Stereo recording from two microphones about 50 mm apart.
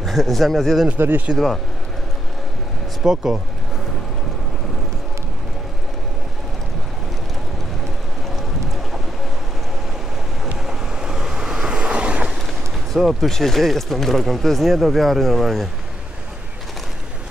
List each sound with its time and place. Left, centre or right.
0.0 s speech: centre
0.9 s speech: right
3.0 s speech: centre
10.7 s waves: centre
12.9 s speech: centre